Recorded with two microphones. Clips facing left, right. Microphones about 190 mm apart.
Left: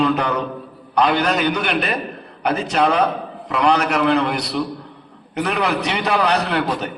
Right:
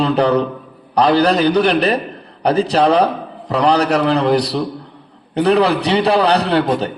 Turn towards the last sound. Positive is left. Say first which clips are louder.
# right 5 dB
turn(degrees=-30)  # may be behind; listen again after turning